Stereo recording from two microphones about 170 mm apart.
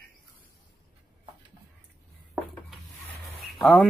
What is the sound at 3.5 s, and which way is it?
Speech, centre (ahead or behind).